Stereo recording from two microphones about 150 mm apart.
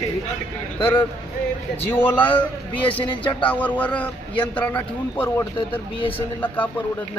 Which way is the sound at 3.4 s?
10° left (ahead or behind).